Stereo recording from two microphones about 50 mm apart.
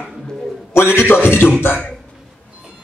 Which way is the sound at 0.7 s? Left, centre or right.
Left.